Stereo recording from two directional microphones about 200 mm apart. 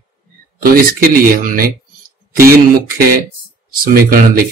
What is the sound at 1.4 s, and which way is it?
Speech, 45° right (ahead or behind).